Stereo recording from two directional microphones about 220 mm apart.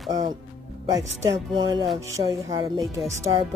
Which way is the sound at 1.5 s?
20° right (ahead or behind).